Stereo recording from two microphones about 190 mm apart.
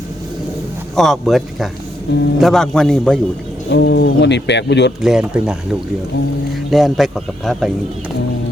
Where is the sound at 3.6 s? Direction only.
65° left (ahead or behind).